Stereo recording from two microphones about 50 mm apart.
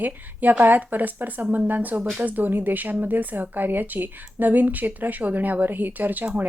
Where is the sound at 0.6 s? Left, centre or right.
Right.